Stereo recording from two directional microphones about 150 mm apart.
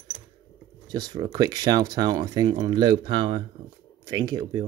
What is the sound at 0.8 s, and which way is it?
Speech, 25° right (ahead or behind).